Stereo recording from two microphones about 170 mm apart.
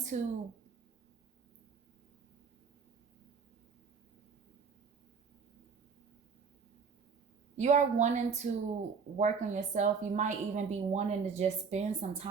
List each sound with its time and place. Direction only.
0.1 s a woman's voice: 45° right (ahead or behind)
7.5 s a woman's voice: 45° right (ahead or behind)